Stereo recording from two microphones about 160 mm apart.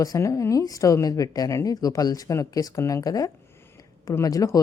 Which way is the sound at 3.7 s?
20° left (ahead or behind).